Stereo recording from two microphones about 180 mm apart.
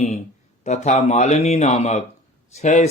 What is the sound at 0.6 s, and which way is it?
Speech, 40° left (ahead or behind).